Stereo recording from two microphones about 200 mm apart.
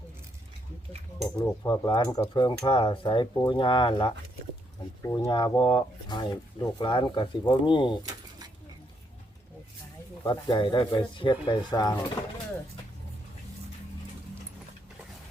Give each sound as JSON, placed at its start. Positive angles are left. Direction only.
{"t": 1.5, "sound": "speech", "side_deg": 15}
{"t": 5.0, "sound": "speech", "side_deg": 15}
{"t": 5.3, "sound": "speech", "side_deg": 25}
{"t": 10.2, "sound": "speech", "side_deg": 20}